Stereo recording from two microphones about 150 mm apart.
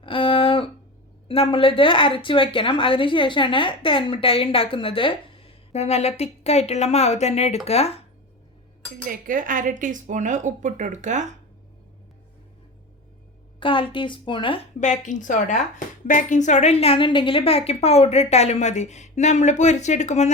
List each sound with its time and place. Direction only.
0.0 s a sound: 35° left (ahead or behind)
1.3 s a woman's voice: 40° left (ahead or behind)
9.0 s speech: 65° right (ahead or behind)
13.6 s a woman's voice: 35° left (ahead or behind)
14.8 s a woman's voice: 55° left (ahead or behind)